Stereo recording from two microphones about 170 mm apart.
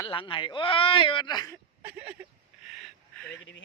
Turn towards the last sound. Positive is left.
turn(degrees=0)  # may be behind; listen again after turning